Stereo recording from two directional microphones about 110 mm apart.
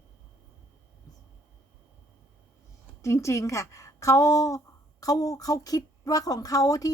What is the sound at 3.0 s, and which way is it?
A woman's voice, 25° left (ahead or behind).